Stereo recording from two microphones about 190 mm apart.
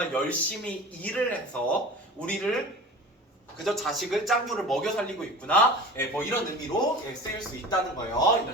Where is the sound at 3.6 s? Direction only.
Centre (ahead or behind).